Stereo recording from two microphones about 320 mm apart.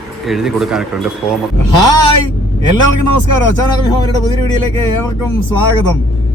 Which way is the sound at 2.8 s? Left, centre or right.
Left.